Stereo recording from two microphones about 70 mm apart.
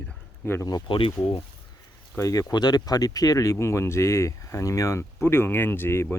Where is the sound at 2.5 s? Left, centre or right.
Left.